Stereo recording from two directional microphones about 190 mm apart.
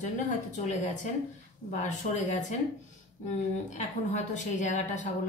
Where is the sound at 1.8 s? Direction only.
40° left (ahead or behind).